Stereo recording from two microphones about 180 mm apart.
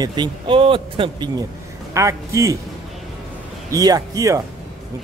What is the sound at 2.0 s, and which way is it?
Speech, 15° right (ahead or behind).